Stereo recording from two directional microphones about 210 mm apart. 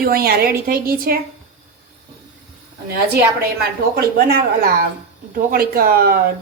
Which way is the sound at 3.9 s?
45° right (ahead or behind).